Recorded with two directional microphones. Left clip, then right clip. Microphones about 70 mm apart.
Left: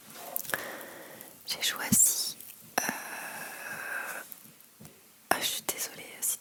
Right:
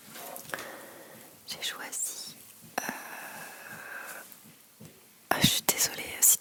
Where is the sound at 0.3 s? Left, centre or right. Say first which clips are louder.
Left 5 dB; left.